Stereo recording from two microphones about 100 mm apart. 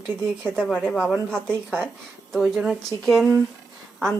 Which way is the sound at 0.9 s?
10° right (ahead or behind).